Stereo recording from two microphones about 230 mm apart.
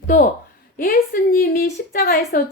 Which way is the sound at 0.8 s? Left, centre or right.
Left.